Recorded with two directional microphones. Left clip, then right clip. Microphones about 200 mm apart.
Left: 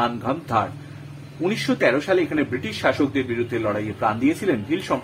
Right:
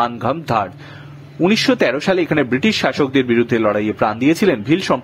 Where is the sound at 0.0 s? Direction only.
45° right (ahead or behind).